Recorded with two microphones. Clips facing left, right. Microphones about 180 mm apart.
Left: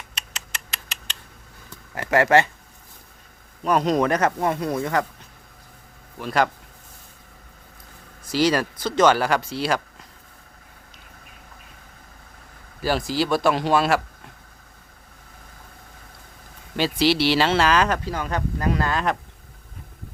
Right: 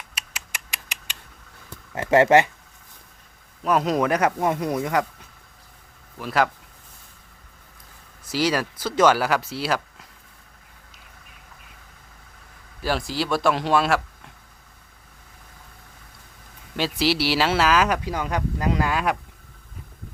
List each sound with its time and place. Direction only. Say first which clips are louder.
0.1 s rodents: left 1 dB; 10° right (ahead or behind)
2.0 s speech: right 2 dB; 25° right (ahead or behind)
3.6 s speech: left 1 dB; 5° right (ahead or behind)
6.1 s speech: left 1 dB; 5° right (ahead or behind)
8.3 s speech: left 3 dB; 5° right (ahead or behind)
12.8 s speech: left 3 dB; centre (ahead or behind)
16.7 s speech: left 3 dB; centre (ahead or behind)